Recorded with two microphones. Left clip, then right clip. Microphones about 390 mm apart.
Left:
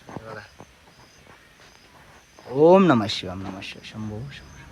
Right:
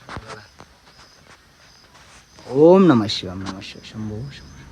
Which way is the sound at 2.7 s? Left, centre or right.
Centre.